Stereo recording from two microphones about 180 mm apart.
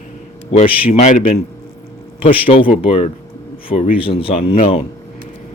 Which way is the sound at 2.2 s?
30° left (ahead or behind).